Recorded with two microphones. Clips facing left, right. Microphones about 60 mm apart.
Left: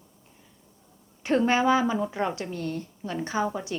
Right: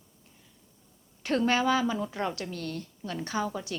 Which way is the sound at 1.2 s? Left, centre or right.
Left.